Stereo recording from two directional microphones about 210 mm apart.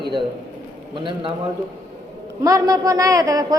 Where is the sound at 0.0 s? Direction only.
20° right (ahead or behind).